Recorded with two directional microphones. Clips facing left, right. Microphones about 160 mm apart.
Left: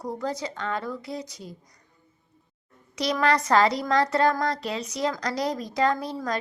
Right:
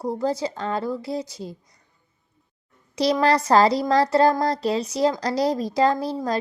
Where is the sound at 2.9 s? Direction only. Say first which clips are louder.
Right 4 dB; 30° right (ahead or behind).